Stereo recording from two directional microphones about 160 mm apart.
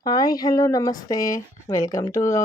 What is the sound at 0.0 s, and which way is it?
Speech, 25° left (ahead or behind).